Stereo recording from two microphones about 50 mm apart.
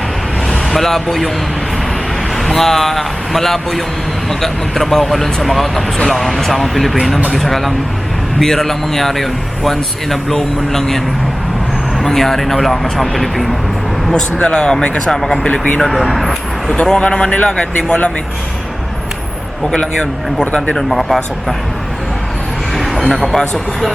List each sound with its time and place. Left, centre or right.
0.7 s speech: centre
2.3 s speech: centre
14.1 s speech: left
15.4 s speech: left
15.8 s speech: centre
16.8 s speech: centre
19.7 s speech: centre
23.1 s speech: centre